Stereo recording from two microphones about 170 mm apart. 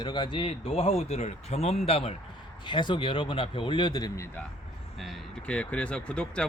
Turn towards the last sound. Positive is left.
turn(degrees=5)  # may be behind; listen again after turning